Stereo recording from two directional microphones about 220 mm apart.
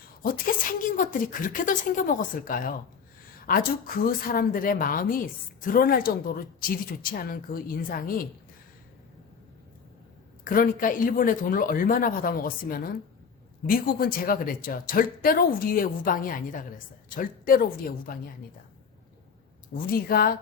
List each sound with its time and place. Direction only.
0.9 s speech: 35° left (ahead or behind)
10.4 s speech: 40° left (ahead or behind)
19.7 s speech: 40° left (ahead or behind)